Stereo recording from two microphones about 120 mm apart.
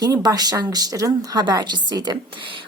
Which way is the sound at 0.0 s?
30° right (ahead or behind).